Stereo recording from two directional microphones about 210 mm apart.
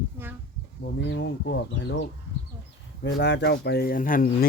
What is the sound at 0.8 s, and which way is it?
Speech, 55° left (ahead or behind).